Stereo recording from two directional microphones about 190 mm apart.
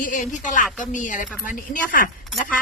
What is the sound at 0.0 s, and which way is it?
Speech, 45° left (ahead or behind).